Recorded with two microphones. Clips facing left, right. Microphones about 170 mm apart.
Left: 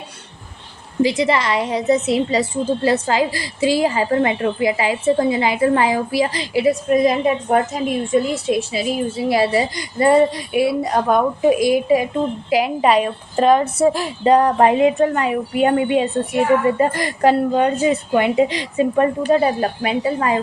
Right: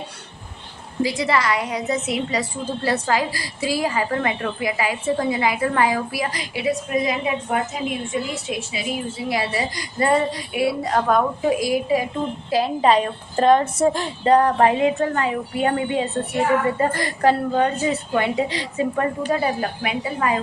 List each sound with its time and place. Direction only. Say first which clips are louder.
1.0 s a woman's voice: left 3 dB; 20° left (ahead or behind)
6.7 s a woman's voice: left 6 dB; 40° left (ahead or behind)